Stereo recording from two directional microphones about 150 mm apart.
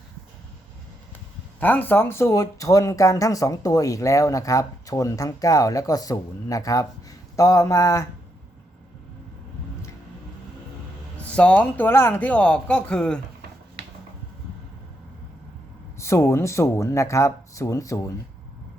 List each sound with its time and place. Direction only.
1.5 s speech: 10° left (ahead or behind)
11.3 s speech: 10° left (ahead or behind)
16.0 s speech: 20° left (ahead or behind)